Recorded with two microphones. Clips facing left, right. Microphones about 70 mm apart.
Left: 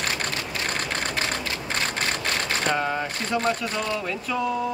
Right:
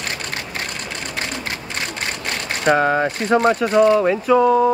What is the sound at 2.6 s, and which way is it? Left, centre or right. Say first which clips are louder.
Speech: right 12 dB; right.